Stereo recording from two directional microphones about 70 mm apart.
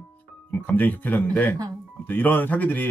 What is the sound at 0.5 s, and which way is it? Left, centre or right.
Speech, left.